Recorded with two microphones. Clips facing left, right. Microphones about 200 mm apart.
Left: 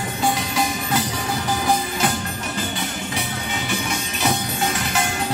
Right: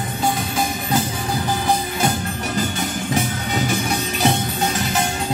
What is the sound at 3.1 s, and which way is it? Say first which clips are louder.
Music: right 6 dB; 40° right (ahead or behind).